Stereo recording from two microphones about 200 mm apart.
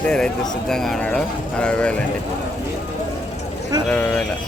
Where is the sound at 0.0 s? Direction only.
5° left (ahead or behind).